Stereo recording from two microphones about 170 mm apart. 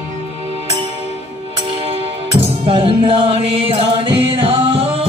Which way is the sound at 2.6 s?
30° right (ahead or behind).